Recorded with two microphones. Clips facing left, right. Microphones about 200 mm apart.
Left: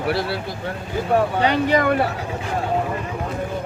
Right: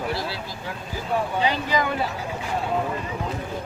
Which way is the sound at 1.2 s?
65° left (ahead or behind).